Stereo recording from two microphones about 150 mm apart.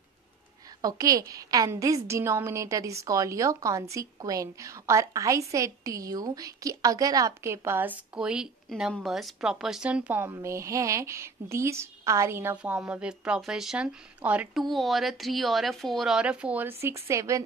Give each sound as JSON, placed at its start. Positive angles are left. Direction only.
{"t": 0.8, "sound": "a woman's voice", "side_deg": -25}